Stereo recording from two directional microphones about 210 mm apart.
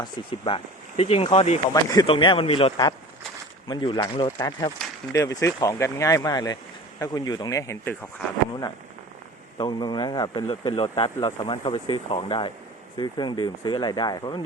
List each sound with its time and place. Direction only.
0.0 s speech: 25° left (ahead or behind)
1.7 s speech: 15° left (ahead or behind)
9.6 s speech: 20° left (ahead or behind)